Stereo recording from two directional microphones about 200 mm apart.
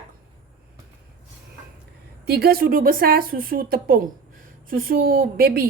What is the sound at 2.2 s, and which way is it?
A woman's voice, 50° right (ahead or behind).